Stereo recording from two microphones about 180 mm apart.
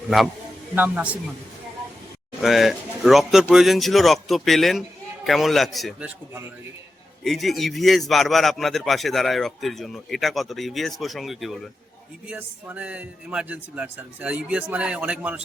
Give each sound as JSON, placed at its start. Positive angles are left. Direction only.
{"t": 0.8, "sound": "a man's voice", "side_deg": -10}
{"t": 2.4, "sound": "a man's voice", "side_deg": 0}
{"t": 7.3, "sound": "a man's voice", "side_deg": 0}